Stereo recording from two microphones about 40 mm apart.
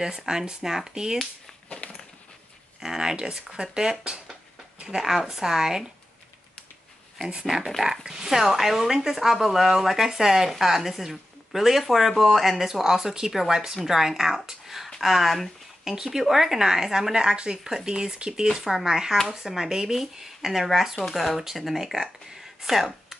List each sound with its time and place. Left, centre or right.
0.3 s speech: centre
1.7 s a sound: left
2.8 s speech: centre
7.2 s speech: centre
15.8 s speech: centre